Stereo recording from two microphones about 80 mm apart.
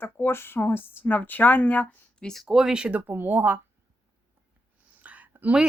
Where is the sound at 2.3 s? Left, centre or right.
Centre; by 3.6 s right.